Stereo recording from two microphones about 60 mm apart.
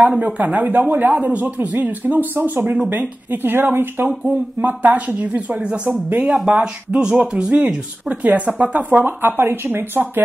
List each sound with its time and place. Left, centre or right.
0.2 s speech: right
4.2 s speech: right